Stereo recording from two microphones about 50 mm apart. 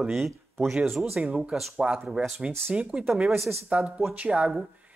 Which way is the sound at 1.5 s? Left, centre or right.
Centre.